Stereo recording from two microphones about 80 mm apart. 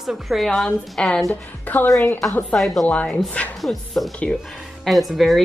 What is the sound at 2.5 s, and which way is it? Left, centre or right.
Speech, centre.